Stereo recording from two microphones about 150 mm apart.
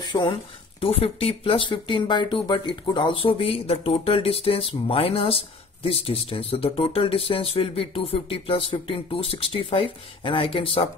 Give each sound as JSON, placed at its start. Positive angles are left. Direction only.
{"t": 0.1, "sound": "speech", "side_deg": 30}